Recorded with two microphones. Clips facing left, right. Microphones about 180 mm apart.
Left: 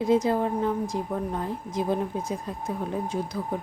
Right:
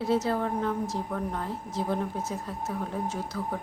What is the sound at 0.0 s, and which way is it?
A woman's voice, 15° left (ahead or behind).